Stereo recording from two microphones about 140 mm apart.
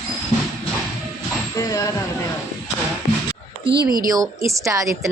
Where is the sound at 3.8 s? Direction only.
90° right.